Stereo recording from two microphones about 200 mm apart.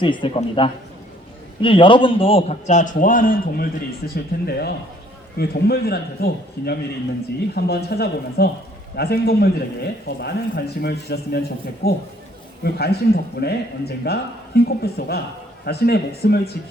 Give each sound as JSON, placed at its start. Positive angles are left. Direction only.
{"t": 0.0, "sound": "a man's voice", "side_deg": 25}